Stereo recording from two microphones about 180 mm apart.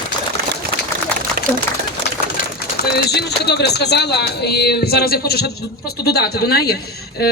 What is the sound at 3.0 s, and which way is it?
A woman's voice, 65° left (ahead or behind).